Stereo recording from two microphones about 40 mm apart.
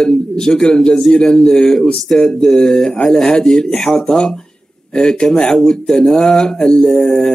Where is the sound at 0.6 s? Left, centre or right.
Centre.